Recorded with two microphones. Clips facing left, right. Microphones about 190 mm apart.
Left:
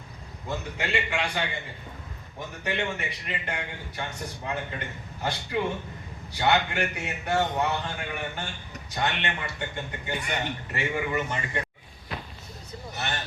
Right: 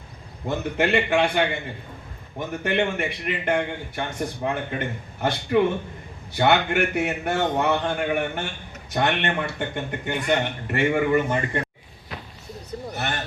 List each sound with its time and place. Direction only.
0.4 s a man's voice: 60° right (ahead or behind)
2.6 s a man's voice: 60° right (ahead or behind)
12.9 s a sound: 55° right (ahead or behind)